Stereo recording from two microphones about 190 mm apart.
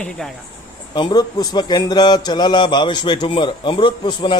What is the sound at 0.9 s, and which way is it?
A man's voice, 20° left (ahead or behind).